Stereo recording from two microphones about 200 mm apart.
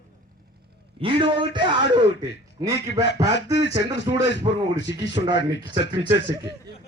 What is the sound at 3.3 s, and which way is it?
Speech, 60° left (ahead or behind).